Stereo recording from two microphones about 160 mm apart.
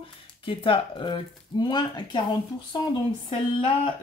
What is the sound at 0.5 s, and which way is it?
Speech, 35° left (ahead or behind).